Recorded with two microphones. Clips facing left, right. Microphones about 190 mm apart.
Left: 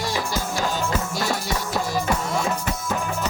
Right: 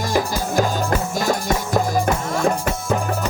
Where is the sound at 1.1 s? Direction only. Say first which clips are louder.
Right 5 dB; 50° right (ahead or behind).